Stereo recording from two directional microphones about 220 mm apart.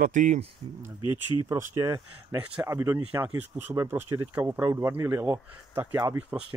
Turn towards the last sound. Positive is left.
turn(degrees=-10)  # may be behind; listen again after turning